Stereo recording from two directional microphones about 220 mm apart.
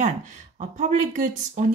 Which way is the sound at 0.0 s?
30° right (ahead or behind).